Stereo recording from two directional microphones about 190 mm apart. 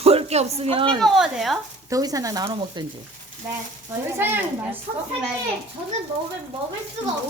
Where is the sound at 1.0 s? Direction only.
Centre (ahead or behind).